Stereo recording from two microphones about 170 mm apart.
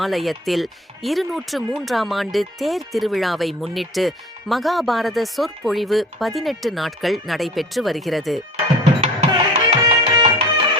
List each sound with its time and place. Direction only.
0.0 s speech: centre (ahead or behind)
9.0 s music: 40° right (ahead or behind)
10.2 s music: 25° right (ahead or behind)